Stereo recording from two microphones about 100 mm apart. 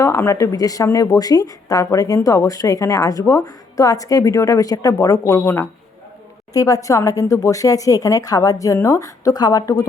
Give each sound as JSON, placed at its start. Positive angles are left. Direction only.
{"t": 0.0, "sound": "speech", "side_deg": 30}
{"t": 6.5, "sound": "speech", "side_deg": 35}